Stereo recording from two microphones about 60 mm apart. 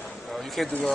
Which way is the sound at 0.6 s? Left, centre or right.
Centre.